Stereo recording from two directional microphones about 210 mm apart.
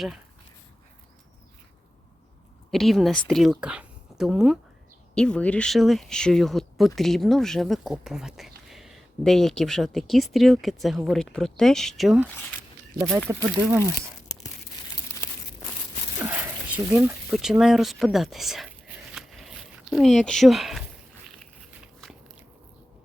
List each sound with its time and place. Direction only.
2.7 s speech: centre (ahead or behind)
15.2 s crumpling: 10° left (ahead or behind)
16.2 s speech: 10° right (ahead or behind)
19.1 s a sound: centre (ahead or behind)